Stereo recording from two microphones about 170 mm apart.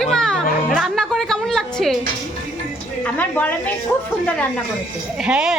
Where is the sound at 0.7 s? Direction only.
Centre (ahead or behind).